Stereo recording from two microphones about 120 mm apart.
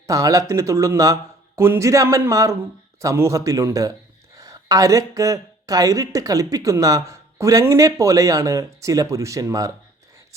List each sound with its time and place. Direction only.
0.1 s speech: 30° right (ahead or behind)